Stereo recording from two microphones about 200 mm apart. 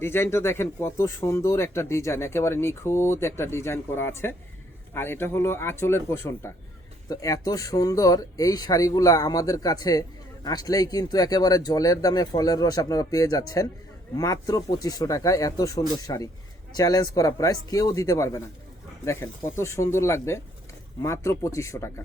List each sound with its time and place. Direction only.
0.0 s speech: 10° left (ahead or behind)